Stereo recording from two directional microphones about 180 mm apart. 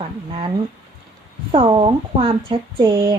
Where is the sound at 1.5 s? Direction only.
30° right (ahead or behind).